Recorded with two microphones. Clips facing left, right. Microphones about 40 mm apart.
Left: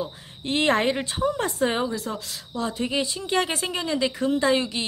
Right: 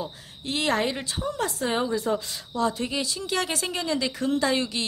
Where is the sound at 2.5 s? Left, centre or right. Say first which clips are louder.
Right 2 dB; centre.